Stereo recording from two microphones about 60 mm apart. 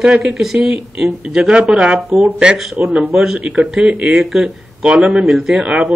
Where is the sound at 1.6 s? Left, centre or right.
Centre.